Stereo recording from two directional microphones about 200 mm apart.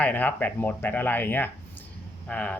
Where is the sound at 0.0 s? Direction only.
10° left (ahead or behind).